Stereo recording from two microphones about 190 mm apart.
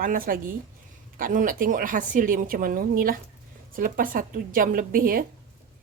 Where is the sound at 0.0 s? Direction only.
50° right (ahead or behind).